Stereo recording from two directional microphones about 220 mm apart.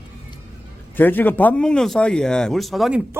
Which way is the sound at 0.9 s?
10° left (ahead or behind).